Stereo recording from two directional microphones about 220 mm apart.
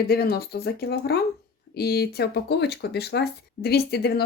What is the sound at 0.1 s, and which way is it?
Speech, 45° left (ahead or behind).